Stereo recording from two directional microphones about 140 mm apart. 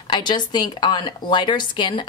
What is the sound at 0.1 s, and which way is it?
A woman's voice, 30° left (ahead or behind).